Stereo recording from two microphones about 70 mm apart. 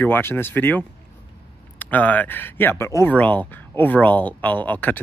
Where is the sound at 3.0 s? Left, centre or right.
Left.